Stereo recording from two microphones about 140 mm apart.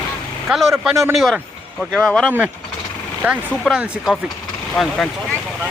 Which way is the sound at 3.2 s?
10° right (ahead or behind).